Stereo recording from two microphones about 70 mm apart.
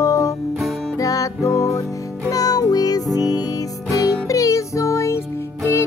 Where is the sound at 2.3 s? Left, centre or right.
Left.